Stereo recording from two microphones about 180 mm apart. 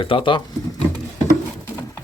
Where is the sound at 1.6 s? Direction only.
15° left (ahead or behind).